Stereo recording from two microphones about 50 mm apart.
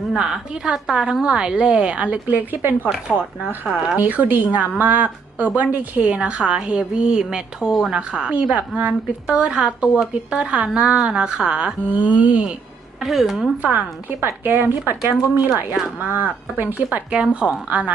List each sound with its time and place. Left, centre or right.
0.1 s a woman's voice: centre
2.2 s a woman's voice: right
3.1 s a woman's voice: centre
3.9 s a woman's voice: right
8.5 s a woman's voice: right
9.4 s a woman's voice: centre
11.9 s a woman's voice: right
13.0 s a woman's voice: centre
13.6 s a woman's voice: right
14.4 s a woman's voice: right
17.2 s a woman's voice: centre